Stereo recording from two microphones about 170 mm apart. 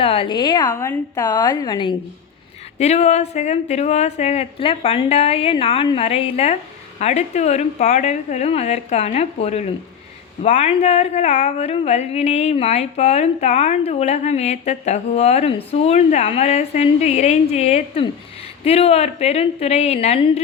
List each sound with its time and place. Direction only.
0.0 s a woman's voice: 35° left (ahead or behind)
2.7 s speech: 40° left (ahead or behind)